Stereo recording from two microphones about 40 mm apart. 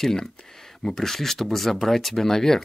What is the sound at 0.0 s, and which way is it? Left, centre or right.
Speech, centre.